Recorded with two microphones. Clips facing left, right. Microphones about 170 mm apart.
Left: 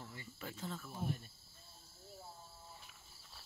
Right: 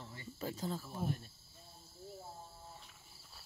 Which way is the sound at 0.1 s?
35° right (ahead or behind).